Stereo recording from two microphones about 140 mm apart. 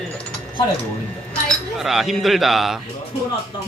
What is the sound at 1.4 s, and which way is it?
Speech, centre (ahead or behind).